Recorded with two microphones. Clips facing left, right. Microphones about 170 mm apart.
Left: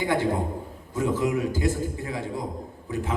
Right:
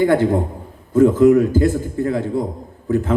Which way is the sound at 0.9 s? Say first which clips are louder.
Right 13 dB; 50° right (ahead or behind).